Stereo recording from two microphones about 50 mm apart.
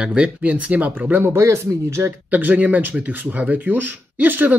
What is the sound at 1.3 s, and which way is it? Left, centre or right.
Speech, right.